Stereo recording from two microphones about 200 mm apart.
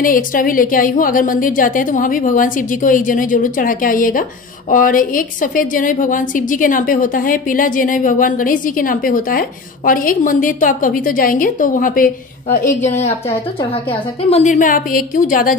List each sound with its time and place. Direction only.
0.0 s a woman's voice: 45° left (ahead or behind)
14.3 s a woman's voice: 40° left (ahead or behind)